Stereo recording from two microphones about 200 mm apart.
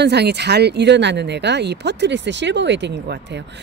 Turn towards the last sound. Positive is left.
turn(degrees=-60)  # may be behind; listen again after turning